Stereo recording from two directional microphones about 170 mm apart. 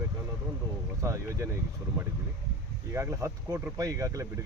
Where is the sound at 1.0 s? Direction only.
15° right (ahead or behind).